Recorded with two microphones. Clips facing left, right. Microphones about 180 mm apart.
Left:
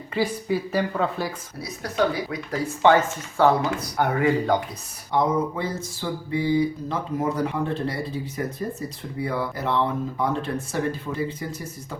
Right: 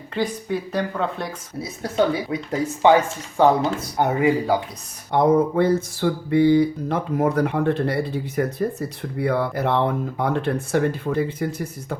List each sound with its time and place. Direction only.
0.1 s a woman's voice: 5° left (ahead or behind)
1.6 s speech: 25° right (ahead or behind); by 4.6 s 10° right (ahead or behind)
5.1 s a sound: 55° right (ahead or behind)